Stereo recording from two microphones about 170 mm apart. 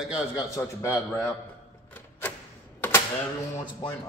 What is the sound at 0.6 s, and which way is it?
Speech, 15° left (ahead or behind).